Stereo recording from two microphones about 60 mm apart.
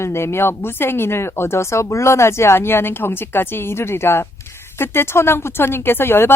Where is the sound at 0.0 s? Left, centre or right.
Left.